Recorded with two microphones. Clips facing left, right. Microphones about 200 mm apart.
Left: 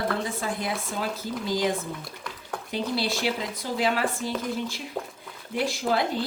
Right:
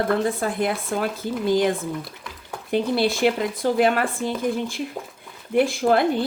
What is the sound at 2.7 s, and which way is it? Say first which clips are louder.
Speech: right 7 dB; 55° right (ahead or behind).